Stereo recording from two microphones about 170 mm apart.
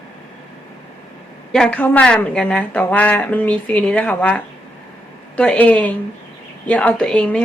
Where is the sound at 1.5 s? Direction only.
5° left (ahead or behind).